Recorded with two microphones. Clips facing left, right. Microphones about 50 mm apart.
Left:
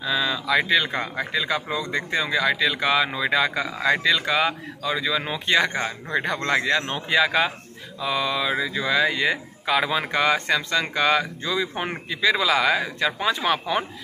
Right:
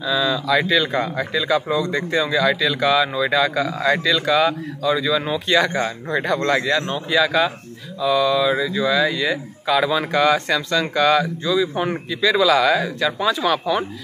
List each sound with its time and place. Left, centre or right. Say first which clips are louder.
0.0 s speech: right 4 dB; left
6.9 s speech: right 2 dB; left
11.4 s speech: right 6 dB; left
11.7 s speech: right 6 dB; left